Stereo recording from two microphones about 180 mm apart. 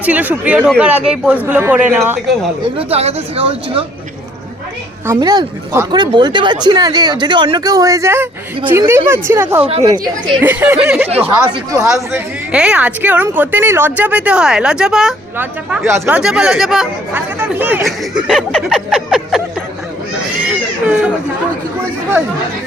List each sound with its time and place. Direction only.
0.0 s speech: 10° right (ahead or behind)
2.7 s speech: 35° right (ahead or behind)
5.0 s speech: 20° right (ahead or behind)
9.8 s speech: 25° right (ahead or behind)
10.4 s speech: 10° right (ahead or behind)
11.4 s speech: 20° right (ahead or behind)
12.1 s speech: 5° right (ahead or behind)
20.4 s baby cry: 5° right (ahead or behind)